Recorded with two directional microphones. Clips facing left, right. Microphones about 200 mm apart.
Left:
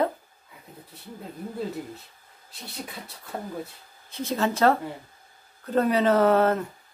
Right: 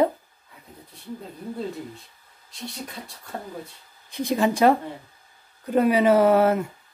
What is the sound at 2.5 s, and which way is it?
Speech, centre (ahead or behind).